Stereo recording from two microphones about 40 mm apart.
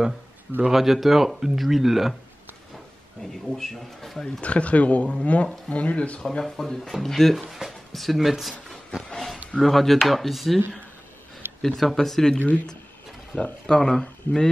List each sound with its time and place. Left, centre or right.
0.7 s speech: centre
3.4 s speech: centre
4.4 s speech: left
6.4 s speech: centre
9.1 s a sound: centre
9.6 s speech: centre
11.6 s speech: centre
12.4 s speech: left
13.3 s speech: left
13.7 s speech: centre